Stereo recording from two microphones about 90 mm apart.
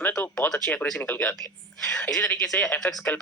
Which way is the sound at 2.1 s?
10° left (ahead or behind).